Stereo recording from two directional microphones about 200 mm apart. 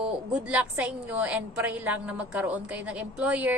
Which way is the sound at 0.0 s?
5° right (ahead or behind).